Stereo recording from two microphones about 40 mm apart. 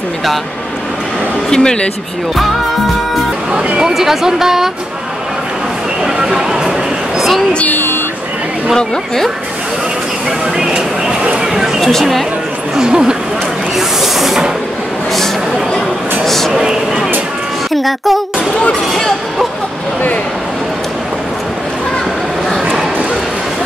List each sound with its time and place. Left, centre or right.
1.5 s speech: centre
3.8 s a woman's voice: centre
6.1 s a sound: centre
7.2 s a sound: centre
8.7 s speech: centre
10.6 s speech: centre
11.8 s speech: centre
12.7 s a woman's voice: centre
13.7 s a woman's voice: centre
16.3 s a sound: centre
16.5 s a woman's voice: centre
17.7 s music: centre
18.7 s a sound: centre